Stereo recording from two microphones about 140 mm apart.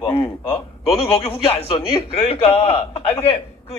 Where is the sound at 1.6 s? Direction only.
40° left (ahead or behind).